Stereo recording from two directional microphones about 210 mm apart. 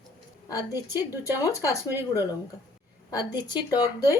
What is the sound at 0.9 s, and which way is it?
Speech, 15° left (ahead or behind).